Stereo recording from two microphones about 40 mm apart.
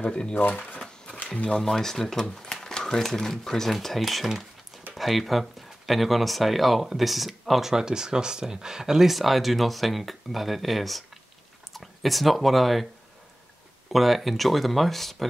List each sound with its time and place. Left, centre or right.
0.0 s speech: left
0.7 s a sound: centre
1.2 s speech: left
1.6 s speech: centre
2.3 s a sound: centre
3.0 s speech: centre
7.7 s speech: centre
9.1 s speech: centre
13.9 s speech: centre